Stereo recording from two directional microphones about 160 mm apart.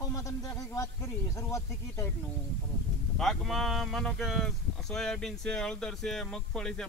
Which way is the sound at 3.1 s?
Centre (ahead or behind).